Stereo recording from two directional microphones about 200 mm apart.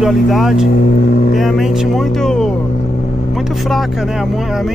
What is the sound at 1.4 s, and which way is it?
Speech, centre (ahead or behind).